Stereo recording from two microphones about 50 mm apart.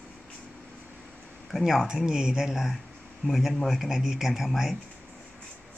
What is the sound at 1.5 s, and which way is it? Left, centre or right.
Speech, centre.